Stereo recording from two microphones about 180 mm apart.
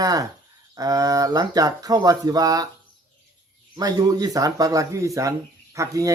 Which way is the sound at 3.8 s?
20° right (ahead or behind).